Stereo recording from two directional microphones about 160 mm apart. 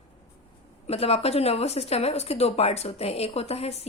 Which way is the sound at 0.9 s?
40° left (ahead or behind).